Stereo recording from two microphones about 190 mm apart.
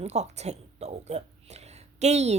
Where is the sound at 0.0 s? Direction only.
35° right (ahead or behind).